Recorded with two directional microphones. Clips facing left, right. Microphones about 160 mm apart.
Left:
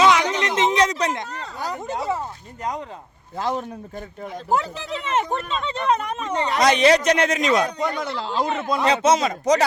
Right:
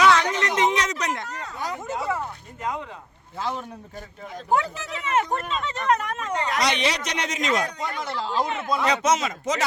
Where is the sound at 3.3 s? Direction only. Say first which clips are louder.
Left 4 dB; 45° left (ahead or behind).